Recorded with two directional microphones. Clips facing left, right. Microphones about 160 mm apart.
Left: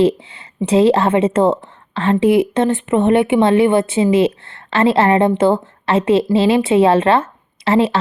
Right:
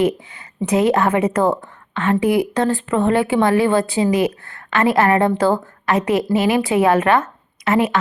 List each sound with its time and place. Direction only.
0.0 s speech: 30° left (ahead or behind)